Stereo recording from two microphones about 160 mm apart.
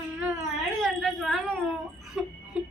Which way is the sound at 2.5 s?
5° right (ahead or behind).